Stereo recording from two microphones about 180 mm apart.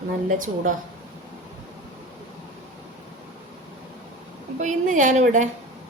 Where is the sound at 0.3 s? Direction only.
45° right (ahead or behind).